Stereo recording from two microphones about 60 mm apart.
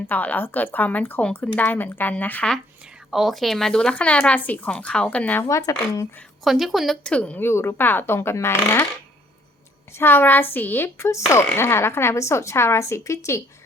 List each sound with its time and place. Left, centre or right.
0.1 s speech: left
3.1 s speech: centre; by 5.5 s left
5.5 s speech: left
6.4 s a woman's voice: centre
7.0 s speech: centre
7.3 s speech: left
10.0 s speech: left
12.1 s speech: left